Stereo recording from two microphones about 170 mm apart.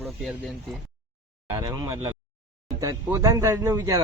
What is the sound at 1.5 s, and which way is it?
A man's voice, 20° right (ahead or behind).